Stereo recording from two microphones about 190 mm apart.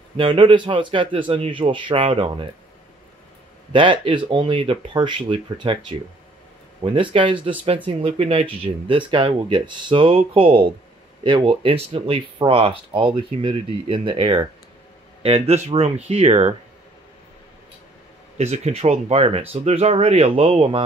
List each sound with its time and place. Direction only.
0.2 s speech: 25° right (ahead or behind)
3.7 s speech: 25° right (ahead or behind)
18.4 s speech: 35° right (ahead or behind)